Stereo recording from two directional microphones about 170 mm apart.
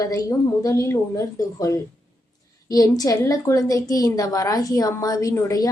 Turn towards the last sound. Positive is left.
turn(degrees=20)  # may be behind; listen again after turning